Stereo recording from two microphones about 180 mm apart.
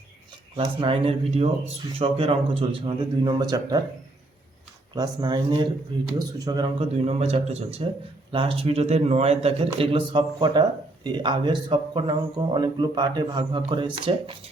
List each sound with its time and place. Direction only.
0.5 s a man's voice: 30° right (ahead or behind)
4.9 s a man's voice: 25° right (ahead or behind)